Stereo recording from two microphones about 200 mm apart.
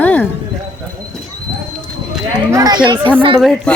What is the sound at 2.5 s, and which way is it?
Speech, 20° right (ahead or behind).